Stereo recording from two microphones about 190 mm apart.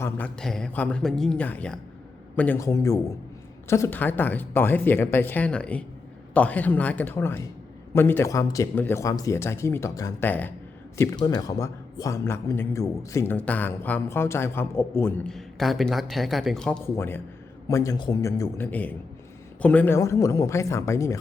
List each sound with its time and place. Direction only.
0.0 s a man's voice: 5° left (ahead or behind)